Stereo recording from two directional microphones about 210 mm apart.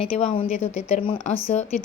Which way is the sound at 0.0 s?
30° left (ahead or behind).